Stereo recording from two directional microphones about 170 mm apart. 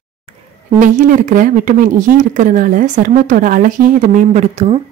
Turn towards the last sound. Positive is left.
turn(degrees=-40)  # may be behind; listen again after turning